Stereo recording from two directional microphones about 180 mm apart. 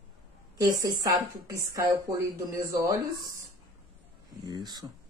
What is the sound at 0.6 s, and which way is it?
Speech, 20° right (ahead or behind).